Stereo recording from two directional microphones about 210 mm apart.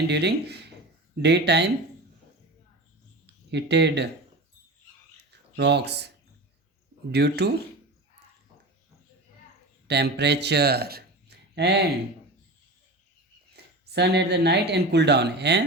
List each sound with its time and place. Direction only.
0.1 s speech: 55° right (ahead or behind)
3.5 s speech: 55° right (ahead or behind)
5.3 s speech: 55° right (ahead or behind)
7.1 s speech: 50° right (ahead or behind)
9.8 s speech: 50° right (ahead or behind)
13.6 s a sound: 50° right (ahead or behind)
13.9 s speech: 55° right (ahead or behind)